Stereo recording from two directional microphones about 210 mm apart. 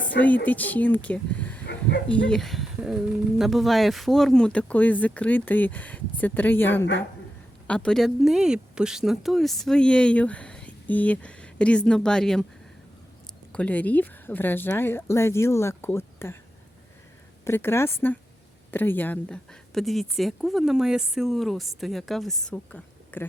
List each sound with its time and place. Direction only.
0.4 s speech: 10° left (ahead or behind)
13.5 s speech: 5° left (ahead or behind)
17.4 s speech: 10° left (ahead or behind)